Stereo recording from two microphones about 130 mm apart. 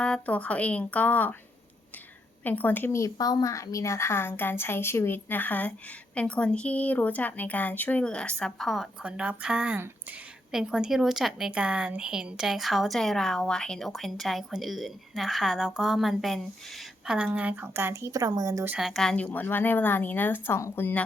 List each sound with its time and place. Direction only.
0.0 s speech: 10° left (ahead or behind)
2.4 s a woman's voice: 15° left (ahead or behind); by 18.7 s 25° right (ahead or behind)
18.8 s speech: centre (ahead or behind); by 21.0 s 15° left (ahead or behind)